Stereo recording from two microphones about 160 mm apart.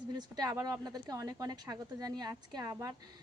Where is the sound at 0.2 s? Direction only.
25° right (ahead or behind).